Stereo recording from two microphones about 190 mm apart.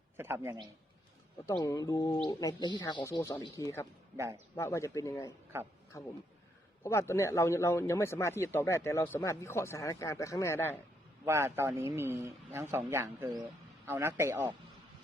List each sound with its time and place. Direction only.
0.2 s speech: 10° right (ahead or behind)
1.5 s speech: 20° left (ahead or behind)
11.3 s speech: 15° right (ahead or behind)